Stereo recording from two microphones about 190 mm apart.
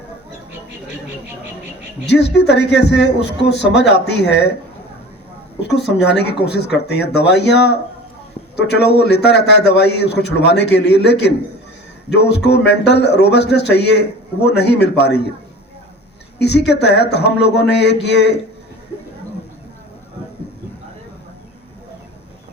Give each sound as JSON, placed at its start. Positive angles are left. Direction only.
{"t": 2.0, "sound": "a man's voice", "side_deg": 60}
{"t": 6.0, "sound": "a man's voice", "side_deg": 60}
{"t": 16.4, "sound": "a man's voice", "side_deg": 60}